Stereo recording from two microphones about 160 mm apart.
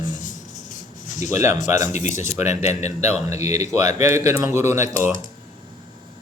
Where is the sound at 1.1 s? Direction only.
50° left (ahead or behind).